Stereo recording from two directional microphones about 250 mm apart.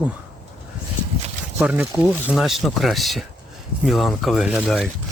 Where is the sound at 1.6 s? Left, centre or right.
Centre.